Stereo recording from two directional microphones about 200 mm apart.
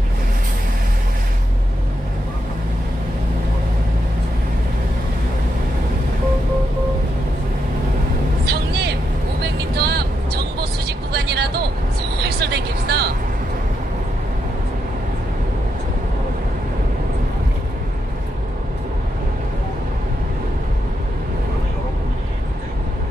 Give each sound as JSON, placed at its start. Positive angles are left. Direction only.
{"t": 8.5, "sound": "vehicle", "side_deg": -55}